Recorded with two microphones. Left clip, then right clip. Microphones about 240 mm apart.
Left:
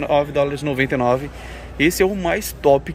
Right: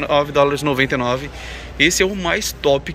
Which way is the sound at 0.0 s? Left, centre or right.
Centre.